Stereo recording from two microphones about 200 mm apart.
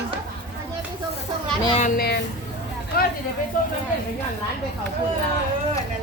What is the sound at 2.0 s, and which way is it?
Speech, 55° left (ahead or behind).